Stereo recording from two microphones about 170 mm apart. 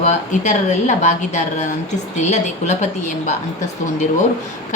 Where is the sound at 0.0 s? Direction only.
45° left (ahead or behind).